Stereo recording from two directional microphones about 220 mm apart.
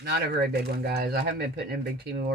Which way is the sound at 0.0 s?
45° right (ahead or behind).